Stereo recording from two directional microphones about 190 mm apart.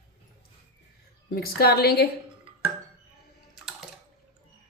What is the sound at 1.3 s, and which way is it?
Speech, 55° left (ahead or behind).